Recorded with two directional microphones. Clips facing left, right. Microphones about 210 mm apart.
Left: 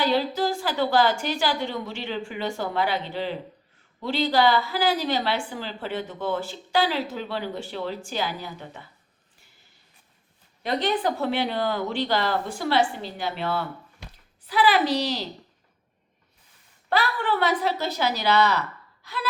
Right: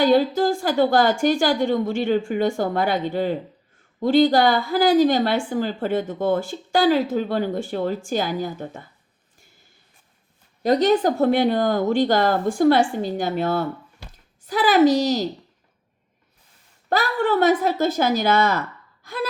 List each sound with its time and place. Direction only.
0.0 s a woman's voice: 50° right (ahead or behind)
10.6 s a woman's voice: 40° right (ahead or behind)
16.9 s a woman's voice: 45° right (ahead or behind)
19.0 s gasp: 45° right (ahead or behind)